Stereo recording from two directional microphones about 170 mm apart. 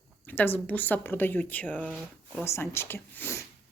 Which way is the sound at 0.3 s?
10° left (ahead or behind).